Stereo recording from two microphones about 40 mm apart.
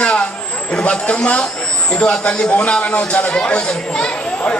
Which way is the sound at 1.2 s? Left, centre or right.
Left.